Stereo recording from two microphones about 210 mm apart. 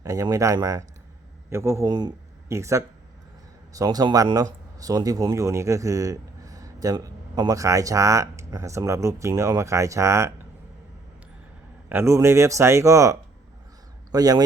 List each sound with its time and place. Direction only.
0.0 s speech: 15° right (ahead or behind)
11.9 s speech: 10° right (ahead or behind)